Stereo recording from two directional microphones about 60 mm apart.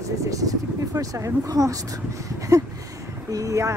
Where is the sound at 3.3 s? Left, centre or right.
Right.